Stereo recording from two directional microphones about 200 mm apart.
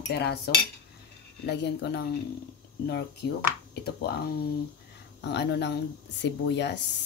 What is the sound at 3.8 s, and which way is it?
Speech, 50° left (ahead or behind).